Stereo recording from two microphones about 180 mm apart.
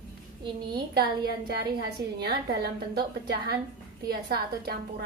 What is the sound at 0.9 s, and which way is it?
Speech, 60° right (ahead or behind).